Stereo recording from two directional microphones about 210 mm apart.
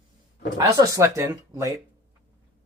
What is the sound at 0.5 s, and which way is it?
Speech, 15° right (ahead or behind).